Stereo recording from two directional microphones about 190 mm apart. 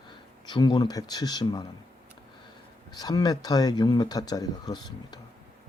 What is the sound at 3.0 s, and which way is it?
Speech, 20° left (ahead or behind).